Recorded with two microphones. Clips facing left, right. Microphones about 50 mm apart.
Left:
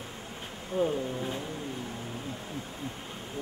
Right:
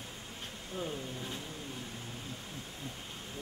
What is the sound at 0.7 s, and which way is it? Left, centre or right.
Speech, centre.